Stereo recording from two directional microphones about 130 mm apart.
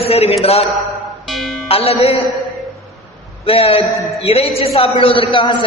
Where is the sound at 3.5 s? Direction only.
50° left (ahead or behind).